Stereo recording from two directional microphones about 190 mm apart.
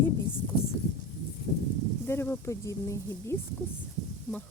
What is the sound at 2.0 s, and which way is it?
A woman's voice, 10° left (ahead or behind).